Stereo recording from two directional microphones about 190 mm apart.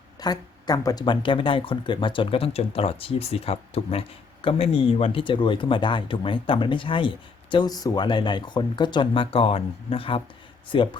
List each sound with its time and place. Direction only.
0.2 s speech: 20° left (ahead or behind)